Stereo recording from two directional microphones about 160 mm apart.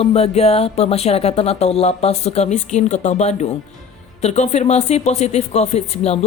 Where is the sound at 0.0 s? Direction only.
40° left (ahead or behind).